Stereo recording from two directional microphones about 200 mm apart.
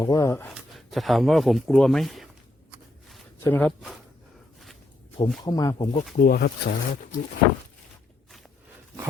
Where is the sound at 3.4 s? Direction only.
10° left (ahead or behind).